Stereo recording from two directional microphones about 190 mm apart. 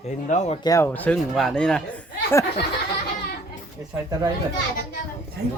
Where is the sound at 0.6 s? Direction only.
15° left (ahead or behind).